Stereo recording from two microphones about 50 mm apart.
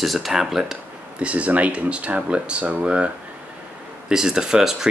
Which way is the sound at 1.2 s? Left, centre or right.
Right.